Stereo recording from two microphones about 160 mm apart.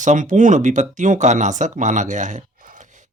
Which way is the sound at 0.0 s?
50° right (ahead or behind).